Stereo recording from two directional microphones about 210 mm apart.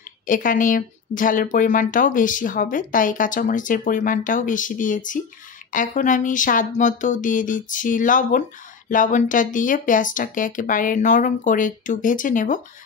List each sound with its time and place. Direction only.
0.3 s speech: 40° left (ahead or behind)